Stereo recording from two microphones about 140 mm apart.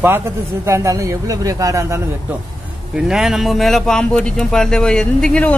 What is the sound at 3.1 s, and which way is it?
Speech, centre (ahead or behind).